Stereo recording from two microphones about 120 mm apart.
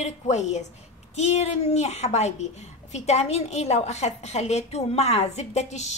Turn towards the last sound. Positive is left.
turn(degrees=75)  # may be behind; listen again after turning